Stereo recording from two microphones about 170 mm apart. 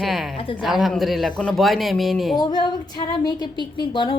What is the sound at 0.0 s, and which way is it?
Speech, centre (ahead or behind).